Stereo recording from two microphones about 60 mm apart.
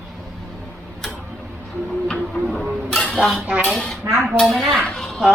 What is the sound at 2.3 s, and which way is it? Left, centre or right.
Music, centre.